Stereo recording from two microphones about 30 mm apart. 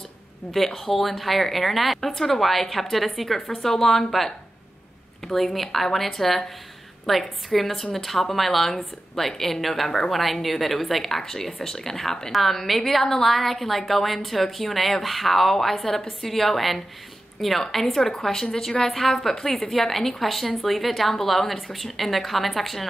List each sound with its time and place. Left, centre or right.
0.5 s a woman's voice: centre
18.9 s a woman's voice: centre